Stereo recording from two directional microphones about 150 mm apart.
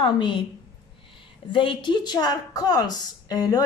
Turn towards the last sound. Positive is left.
turn(degrees=25)  # may be behind; listen again after turning